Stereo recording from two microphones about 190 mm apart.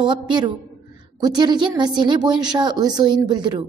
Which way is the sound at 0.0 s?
25° right (ahead or behind).